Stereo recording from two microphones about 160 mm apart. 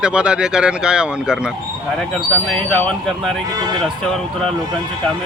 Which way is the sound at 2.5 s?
5° left (ahead or behind).